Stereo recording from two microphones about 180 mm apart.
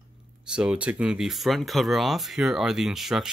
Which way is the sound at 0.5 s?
5° right (ahead or behind).